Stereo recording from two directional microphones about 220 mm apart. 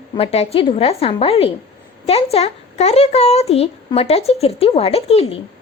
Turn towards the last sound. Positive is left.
turn(degrees=25)  # may be behind; listen again after turning